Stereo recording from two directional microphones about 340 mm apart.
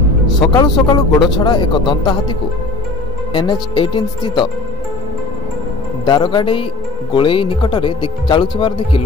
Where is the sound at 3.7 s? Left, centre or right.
Centre.